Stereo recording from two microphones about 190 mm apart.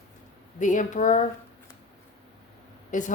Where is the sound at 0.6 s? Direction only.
40° left (ahead or behind).